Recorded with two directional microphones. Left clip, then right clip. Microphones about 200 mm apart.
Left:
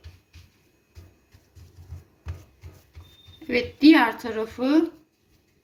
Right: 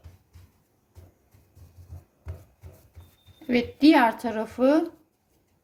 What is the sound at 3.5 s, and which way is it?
A woman's voice, 50° right (ahead or behind).